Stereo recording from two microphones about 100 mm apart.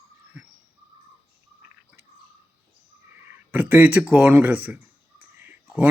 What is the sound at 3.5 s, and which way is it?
A man's voice, 15° right (ahead or behind).